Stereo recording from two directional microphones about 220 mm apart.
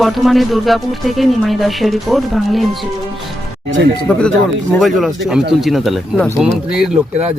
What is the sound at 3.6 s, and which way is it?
Speech, 55° right (ahead or behind).